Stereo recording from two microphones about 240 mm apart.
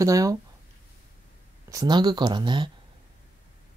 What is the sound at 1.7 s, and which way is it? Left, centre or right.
Speech, centre.